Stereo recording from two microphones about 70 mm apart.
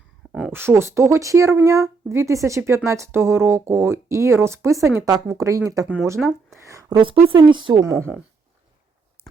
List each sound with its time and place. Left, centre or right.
0.5 s speech: right
6.2 s speech: centre
6.6 s a sound: right
6.8 s a woman's voice: right
7.7 s speech: right